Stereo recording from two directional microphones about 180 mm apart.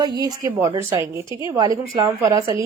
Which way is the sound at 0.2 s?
20° right (ahead or behind).